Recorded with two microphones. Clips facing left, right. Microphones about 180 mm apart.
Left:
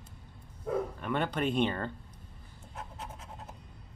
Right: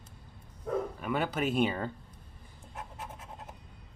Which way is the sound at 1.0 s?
5° right (ahead or behind).